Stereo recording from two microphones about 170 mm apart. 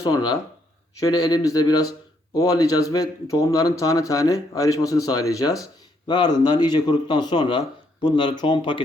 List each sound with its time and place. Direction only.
0.0 s speech: 20° left (ahead or behind)